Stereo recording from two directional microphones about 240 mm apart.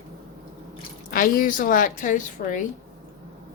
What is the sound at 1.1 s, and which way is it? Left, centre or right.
Speech, left.